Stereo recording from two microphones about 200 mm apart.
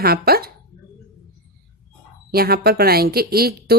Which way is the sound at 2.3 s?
50° right (ahead or behind).